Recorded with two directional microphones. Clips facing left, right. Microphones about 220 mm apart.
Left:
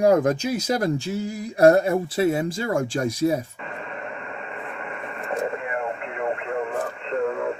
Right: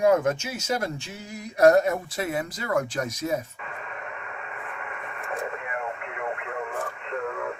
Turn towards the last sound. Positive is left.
turn(degrees=30)  # may be behind; listen again after turning